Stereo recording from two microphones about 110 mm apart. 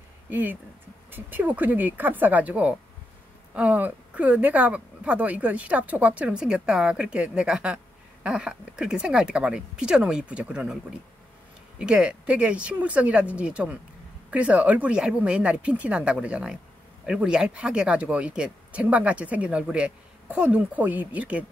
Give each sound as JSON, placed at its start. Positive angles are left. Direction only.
{"t": 0.3, "sound": "speech", "side_deg": -15}
{"t": 11.8, "sound": "speech", "side_deg": -5}